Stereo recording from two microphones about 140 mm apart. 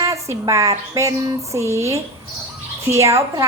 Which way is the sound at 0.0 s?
25° right (ahead or behind).